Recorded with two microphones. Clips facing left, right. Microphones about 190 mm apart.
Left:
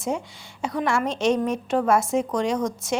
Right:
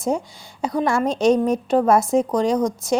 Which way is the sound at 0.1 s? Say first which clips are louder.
Right 5 dB; 40° right (ahead or behind).